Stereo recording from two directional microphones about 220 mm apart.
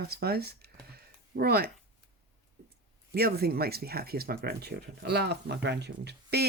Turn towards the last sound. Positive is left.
turn(degrees=-50)  # may be behind; listen again after turning